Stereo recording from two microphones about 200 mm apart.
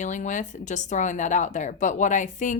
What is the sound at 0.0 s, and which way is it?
Speech, 40° left (ahead or behind).